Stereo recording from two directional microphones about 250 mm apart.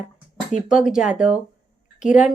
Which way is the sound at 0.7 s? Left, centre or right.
Centre.